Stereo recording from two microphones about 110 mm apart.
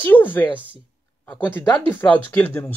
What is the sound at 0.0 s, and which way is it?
Speech, 20° left (ahead or behind).